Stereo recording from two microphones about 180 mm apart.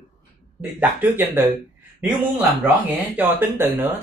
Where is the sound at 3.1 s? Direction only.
10° right (ahead or behind).